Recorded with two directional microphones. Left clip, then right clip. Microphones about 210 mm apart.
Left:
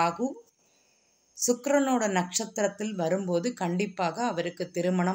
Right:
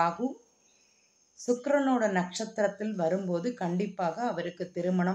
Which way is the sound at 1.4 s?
40° left (ahead or behind).